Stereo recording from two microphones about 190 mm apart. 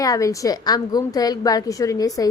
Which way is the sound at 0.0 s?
15° left (ahead or behind).